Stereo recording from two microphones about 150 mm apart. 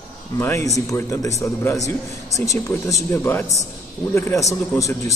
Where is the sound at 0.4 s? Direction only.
15° left (ahead or behind).